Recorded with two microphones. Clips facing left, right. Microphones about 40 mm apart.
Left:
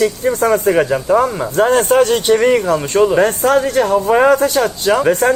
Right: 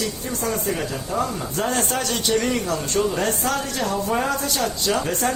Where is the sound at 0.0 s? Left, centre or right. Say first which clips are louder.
Left 12 dB; left.